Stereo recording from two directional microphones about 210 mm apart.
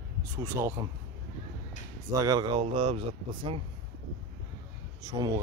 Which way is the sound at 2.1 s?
15° right (ahead or behind).